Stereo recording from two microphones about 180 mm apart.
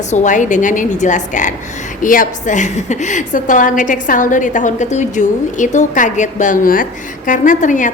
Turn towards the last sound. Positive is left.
turn(degrees=45)  # may be behind; listen again after turning